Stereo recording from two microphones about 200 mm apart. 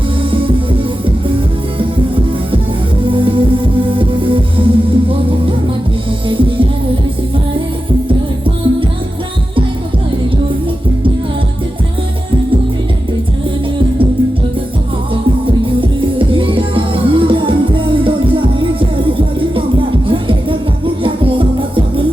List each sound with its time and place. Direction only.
0.3 s music: 25° right (ahead or behind)
3.1 s music: 25° right (ahead or behind)
8.0 s music: 25° right (ahead or behind)
15.1 s music: 25° right (ahead or behind)